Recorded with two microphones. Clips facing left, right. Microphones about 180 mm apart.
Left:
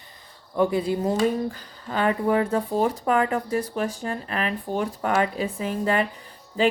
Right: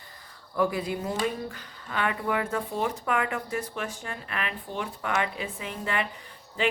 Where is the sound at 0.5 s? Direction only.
25° left (ahead or behind).